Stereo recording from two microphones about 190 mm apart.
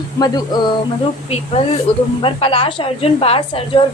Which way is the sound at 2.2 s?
30° left (ahead or behind).